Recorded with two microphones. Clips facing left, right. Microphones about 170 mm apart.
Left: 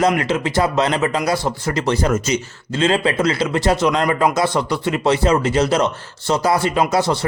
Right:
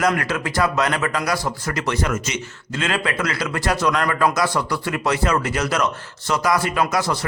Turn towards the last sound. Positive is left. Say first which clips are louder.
# left 4 dB
turn(degrees=25)  # may be behind; listen again after turning